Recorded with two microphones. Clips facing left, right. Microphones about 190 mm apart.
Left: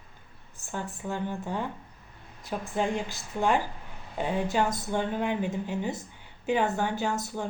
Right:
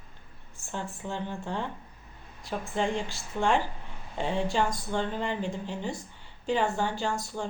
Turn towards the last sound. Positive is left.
turn(degrees=20)  # may be behind; listen again after turning